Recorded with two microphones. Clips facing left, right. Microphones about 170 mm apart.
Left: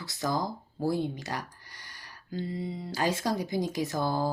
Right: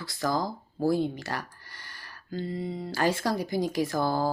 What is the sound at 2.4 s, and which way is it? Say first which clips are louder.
Speech: right 2 dB; 55° right (ahead or behind).